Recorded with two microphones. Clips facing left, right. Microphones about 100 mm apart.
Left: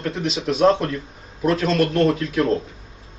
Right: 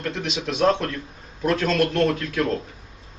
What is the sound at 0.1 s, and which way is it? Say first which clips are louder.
Speech: left 5 dB; 30° left (ahead or behind).